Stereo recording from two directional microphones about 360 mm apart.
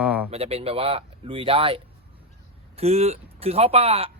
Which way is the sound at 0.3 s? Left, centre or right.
Centre.